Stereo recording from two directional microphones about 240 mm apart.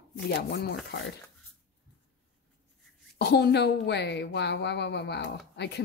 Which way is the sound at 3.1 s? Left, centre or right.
Left.